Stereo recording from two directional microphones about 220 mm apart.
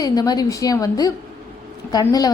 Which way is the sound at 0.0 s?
15° left (ahead or behind).